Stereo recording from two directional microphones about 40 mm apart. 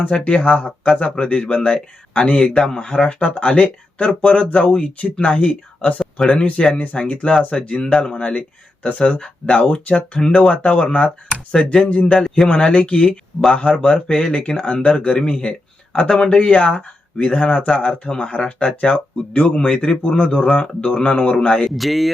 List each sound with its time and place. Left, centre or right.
0.1 s speech: left
11.5 s speech: left
11.9 s speech: left
12.2 s speech: centre
12.5 s speech: left
20.0 s speech: left
20.3 s speech: left
21.8 s speech: centre